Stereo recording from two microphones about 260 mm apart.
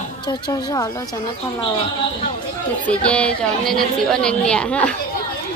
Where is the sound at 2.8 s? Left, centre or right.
Centre.